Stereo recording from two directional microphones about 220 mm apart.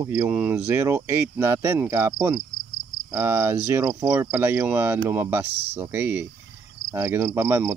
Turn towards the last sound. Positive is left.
turn(degrees=-10)  # may be behind; listen again after turning